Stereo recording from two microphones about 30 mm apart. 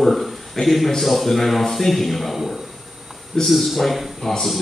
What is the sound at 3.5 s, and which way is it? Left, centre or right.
Speech, centre.